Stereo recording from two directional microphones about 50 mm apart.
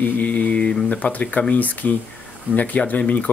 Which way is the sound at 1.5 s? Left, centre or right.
Left.